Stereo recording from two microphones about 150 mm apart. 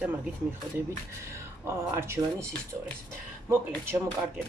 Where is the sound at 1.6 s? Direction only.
15° right (ahead or behind).